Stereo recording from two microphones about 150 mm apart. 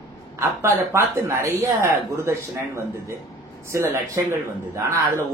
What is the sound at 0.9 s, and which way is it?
A man's voice, 20° right (ahead or behind).